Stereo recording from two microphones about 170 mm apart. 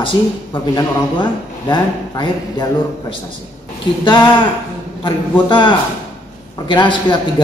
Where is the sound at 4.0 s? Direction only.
25° left (ahead or behind).